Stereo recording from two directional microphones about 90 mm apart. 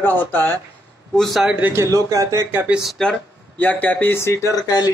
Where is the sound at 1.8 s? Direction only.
35° right (ahead or behind).